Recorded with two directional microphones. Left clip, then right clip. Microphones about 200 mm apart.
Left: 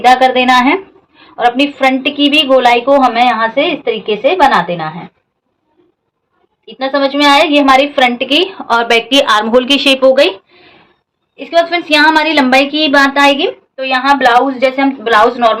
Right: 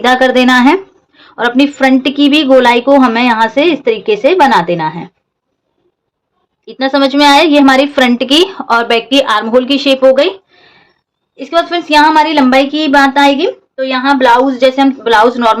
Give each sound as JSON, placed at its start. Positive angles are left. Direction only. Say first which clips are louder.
{"t": 0.0, "sound": "a woman's voice", "louder": "left 1 dB", "side_deg": -40}
{"t": 6.7, "sound": "a woman's voice", "louder": "right 2 dB", "side_deg": -50}
{"t": 8.6, "sound": "speech", "louder": "even", "side_deg": -20}
{"t": 11.3, "sound": "a woman's voice", "louder": "left 1 dB", "side_deg": -35}
{"t": 11.9, "sound": "a woman's voice", "louder": "right 4 dB", "side_deg": -20}
{"t": 14.6, "sound": "a woman's voice", "louder": "right 3 dB", "side_deg": -50}